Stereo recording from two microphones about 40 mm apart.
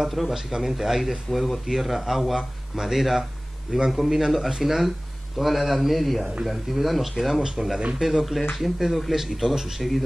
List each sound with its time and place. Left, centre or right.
0.0 s speech: centre